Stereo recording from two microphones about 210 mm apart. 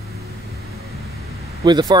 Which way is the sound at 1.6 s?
20° right (ahead or behind).